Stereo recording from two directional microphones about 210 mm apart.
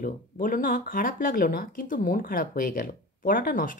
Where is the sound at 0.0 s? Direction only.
40° left (ahead or behind).